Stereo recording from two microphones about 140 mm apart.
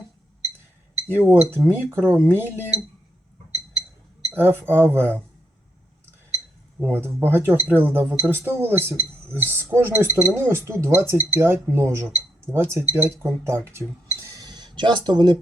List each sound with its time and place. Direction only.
1.0 s speech: 15° right (ahead or behind)
4.4 s speech: 15° right (ahead or behind)
6.8 s speech: 15° right (ahead or behind); by 15.4 s 30° right (ahead or behind)